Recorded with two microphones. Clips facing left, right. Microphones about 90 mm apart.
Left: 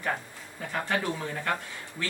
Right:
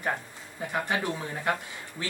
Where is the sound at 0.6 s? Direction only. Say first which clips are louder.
Right 1 dB; 15° right (ahead or behind).